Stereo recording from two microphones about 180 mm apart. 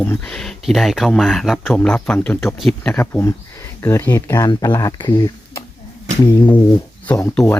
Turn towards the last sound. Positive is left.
turn(degrees=10)  # may be behind; listen again after turning